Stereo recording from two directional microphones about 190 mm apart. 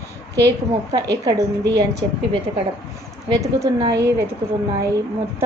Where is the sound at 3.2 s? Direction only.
20° right (ahead or behind).